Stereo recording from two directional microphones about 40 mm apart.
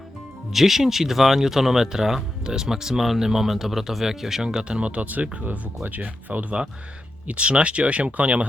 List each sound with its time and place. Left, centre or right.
0.5 s speech: centre
4.4 s speech: right
7.3 s speech: right